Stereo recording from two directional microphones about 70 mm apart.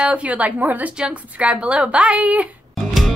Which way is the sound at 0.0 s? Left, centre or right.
Centre.